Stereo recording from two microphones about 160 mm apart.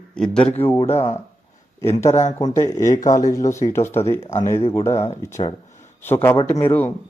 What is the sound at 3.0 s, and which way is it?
Speech, 55° left (ahead or behind).